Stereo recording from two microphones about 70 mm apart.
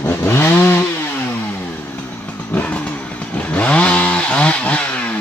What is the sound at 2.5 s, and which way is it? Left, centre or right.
Vehicle, left.